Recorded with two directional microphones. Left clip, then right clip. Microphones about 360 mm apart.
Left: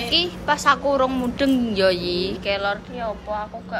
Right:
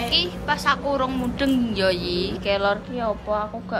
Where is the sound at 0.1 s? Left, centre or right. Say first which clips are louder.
Left 3 dB; centre.